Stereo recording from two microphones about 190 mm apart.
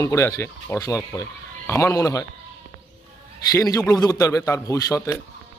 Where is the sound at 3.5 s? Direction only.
15° left (ahead or behind).